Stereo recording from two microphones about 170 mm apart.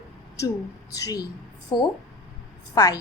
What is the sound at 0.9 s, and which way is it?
Speech, 20° left (ahead or behind).